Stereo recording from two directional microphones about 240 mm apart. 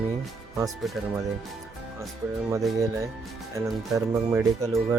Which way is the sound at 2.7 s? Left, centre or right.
Centre.